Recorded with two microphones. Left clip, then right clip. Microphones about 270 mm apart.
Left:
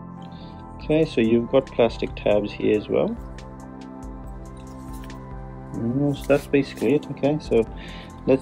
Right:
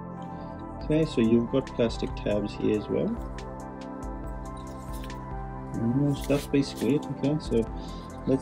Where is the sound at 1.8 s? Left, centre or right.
Right.